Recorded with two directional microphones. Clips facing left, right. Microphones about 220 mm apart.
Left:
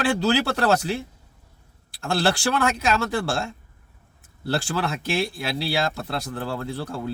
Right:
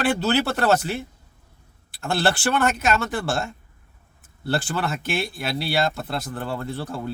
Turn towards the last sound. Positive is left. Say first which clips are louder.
# even
turn(degrees=0)  # may be behind; listen again after turning